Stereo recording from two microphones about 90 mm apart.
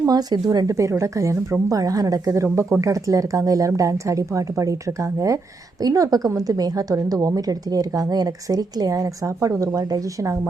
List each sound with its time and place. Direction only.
0.0 s speech: 45° right (ahead or behind)
0.8 s a woman's voice: 35° right (ahead or behind)
5.8 s a woman's voice: 40° right (ahead or behind)